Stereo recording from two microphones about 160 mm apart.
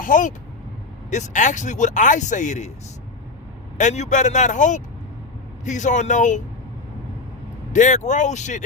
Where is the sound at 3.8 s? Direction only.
50° left (ahead or behind).